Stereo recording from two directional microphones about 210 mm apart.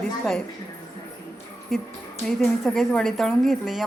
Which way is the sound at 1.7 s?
Centre (ahead or behind).